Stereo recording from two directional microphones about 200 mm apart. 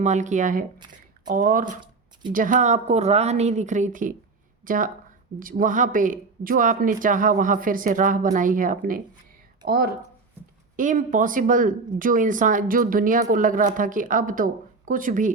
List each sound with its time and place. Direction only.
0.0 s speech: 35° right (ahead or behind)